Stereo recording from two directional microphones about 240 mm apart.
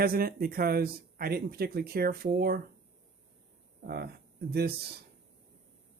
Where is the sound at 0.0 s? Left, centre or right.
Right.